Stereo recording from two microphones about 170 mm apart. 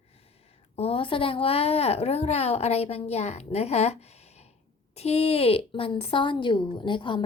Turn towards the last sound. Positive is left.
turn(degrees=30)  # may be behind; listen again after turning